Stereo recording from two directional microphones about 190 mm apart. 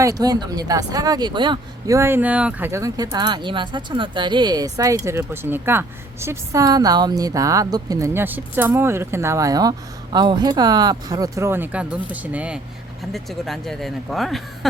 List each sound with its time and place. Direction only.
0.0 s speech: 20° right (ahead or behind); by 14.7 s centre (ahead or behind)